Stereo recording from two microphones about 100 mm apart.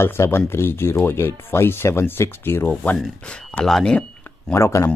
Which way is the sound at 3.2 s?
10° left (ahead or behind).